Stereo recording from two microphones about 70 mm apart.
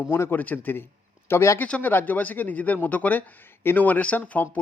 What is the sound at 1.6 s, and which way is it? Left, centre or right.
A man's voice, left.